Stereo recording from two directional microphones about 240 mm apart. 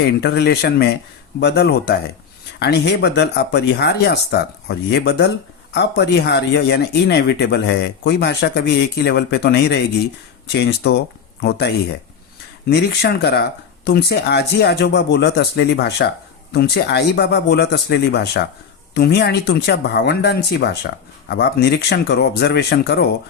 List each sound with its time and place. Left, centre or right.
0.2 s speech: left